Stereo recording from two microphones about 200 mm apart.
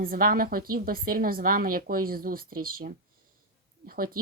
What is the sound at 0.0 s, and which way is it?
Speech, 45° right (ahead or behind).